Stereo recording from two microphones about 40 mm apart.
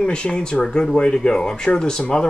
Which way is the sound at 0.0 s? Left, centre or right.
Left.